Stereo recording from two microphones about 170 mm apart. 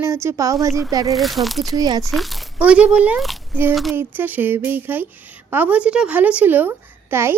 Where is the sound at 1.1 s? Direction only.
Centre (ahead or behind).